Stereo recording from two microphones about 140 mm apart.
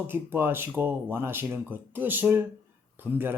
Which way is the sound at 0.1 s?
15° right (ahead or behind).